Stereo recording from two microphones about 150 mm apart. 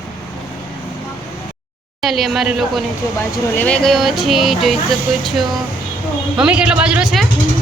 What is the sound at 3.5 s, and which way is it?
Speech, 10° left (ahead or behind).